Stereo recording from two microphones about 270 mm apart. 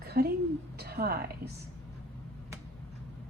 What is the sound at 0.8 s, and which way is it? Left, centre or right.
Speech, right.